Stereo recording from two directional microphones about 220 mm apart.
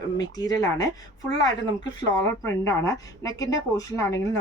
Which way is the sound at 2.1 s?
15° left (ahead or behind).